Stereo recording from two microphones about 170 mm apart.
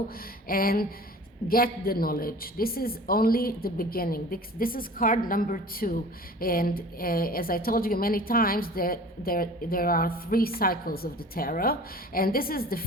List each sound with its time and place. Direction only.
0.4 s a woman's voice: 60° left (ahead or behind)